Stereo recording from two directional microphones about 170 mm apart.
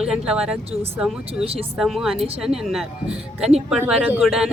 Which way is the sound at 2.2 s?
35° right (ahead or behind).